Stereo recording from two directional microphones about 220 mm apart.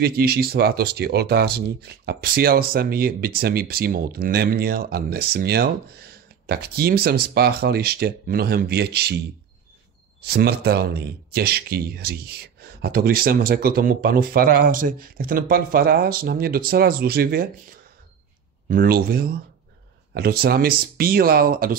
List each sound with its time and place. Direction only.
0.0 s speech: 45° right (ahead or behind)
10.2 s speech: 45° right (ahead or behind)